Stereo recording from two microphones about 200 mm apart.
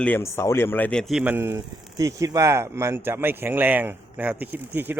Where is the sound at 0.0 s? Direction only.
10° left (ahead or behind).